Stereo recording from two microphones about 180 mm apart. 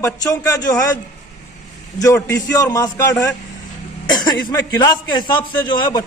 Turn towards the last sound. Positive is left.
turn(degrees=25)  # may be behind; listen again after turning